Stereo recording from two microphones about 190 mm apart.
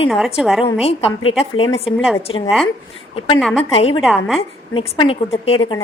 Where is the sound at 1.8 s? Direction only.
Centre (ahead or behind).